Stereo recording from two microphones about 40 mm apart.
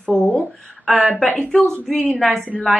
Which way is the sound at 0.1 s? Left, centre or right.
Left.